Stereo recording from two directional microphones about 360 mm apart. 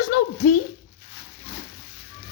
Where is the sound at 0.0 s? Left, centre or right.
Left.